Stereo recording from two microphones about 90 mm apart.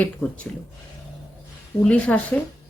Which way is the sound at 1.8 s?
10° left (ahead or behind).